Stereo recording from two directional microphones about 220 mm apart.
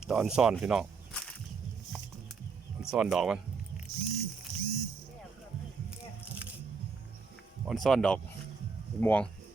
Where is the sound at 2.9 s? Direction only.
5° right (ahead or behind).